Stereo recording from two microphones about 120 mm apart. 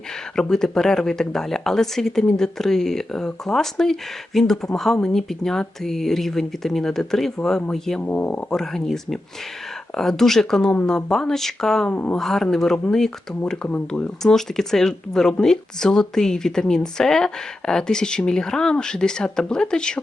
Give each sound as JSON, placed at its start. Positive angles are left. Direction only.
{"t": 0.3, "sound": "speech", "side_deg": 5}
{"t": 8.0, "sound": "speech", "side_deg": 15}